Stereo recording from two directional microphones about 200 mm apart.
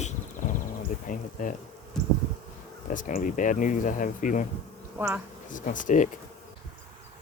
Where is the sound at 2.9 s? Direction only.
40° left (ahead or behind).